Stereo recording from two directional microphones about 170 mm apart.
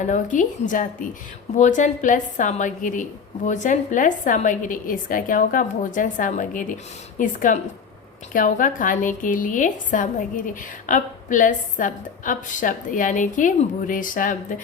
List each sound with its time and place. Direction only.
0.0 s a woman's voice: 45° left (ahead or behind)